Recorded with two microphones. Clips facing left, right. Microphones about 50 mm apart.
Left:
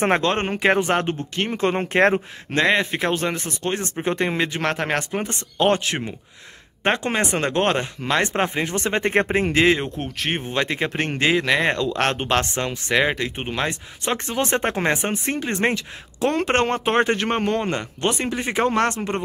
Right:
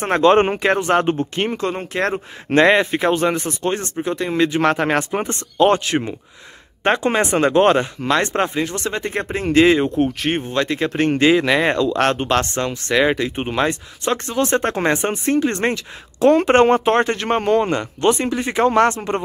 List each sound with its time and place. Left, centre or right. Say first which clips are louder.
0.2 s speech: right 9 dB; centre
0.6 s speech: right 1 dB; centre
1.0 s speech: right 5 dB; centre
1.6 s speech: left 3 dB; left
2.5 s speech: right 7 dB; right
2.9 s speech: right 5 dB; centre
3.9 s speech: even; left
4.5 s speech: right 6 dB; centre
8.2 s speech: even; centre
8.5 s speech: right 1 dB; left
9.5 s speech: right 5 dB; centre
10.4 s speech: right 3 dB; centre
14.0 s speech: right 4 dB; centre
16.8 s speech: right 2 dB; centre